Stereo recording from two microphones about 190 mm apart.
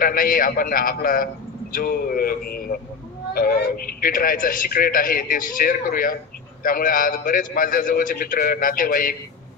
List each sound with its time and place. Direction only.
0.0 s a man's voice: 45° left (ahead or behind)